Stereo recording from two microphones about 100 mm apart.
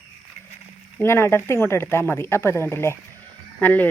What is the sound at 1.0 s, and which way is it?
Speech, 25° left (ahead or behind).